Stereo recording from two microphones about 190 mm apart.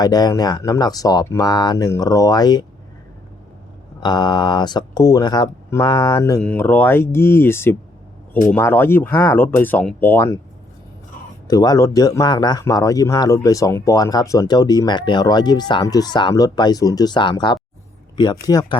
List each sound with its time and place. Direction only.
0.0 s a man's voice: 20° left (ahead or behind)
4.0 s a man's voice: 20° left (ahead or behind)
6.4 s speech: 10° left (ahead or behind)
11.4 s a man's voice: 20° left (ahead or behind)